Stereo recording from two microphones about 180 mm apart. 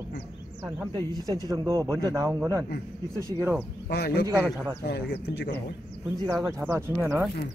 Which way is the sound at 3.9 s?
60° left (ahead or behind).